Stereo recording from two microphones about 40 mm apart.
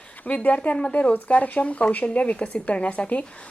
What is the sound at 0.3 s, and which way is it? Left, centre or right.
A woman's voice, left.